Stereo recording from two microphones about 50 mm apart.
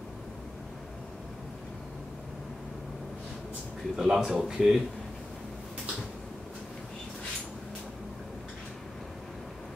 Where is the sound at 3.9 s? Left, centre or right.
Centre.